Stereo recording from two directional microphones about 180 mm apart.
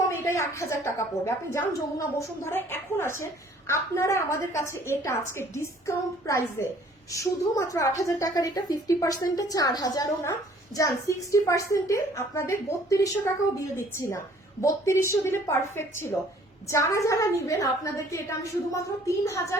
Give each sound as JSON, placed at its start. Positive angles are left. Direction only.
{"t": 0.1, "sound": "a woman's voice", "side_deg": 15}